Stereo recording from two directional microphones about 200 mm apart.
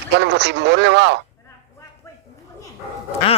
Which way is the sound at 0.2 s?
60° right (ahead or behind).